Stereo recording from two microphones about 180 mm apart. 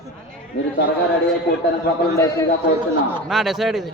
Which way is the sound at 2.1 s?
15° left (ahead or behind).